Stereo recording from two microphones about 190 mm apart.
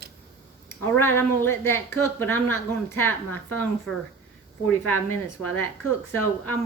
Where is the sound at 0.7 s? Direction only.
10° left (ahead or behind).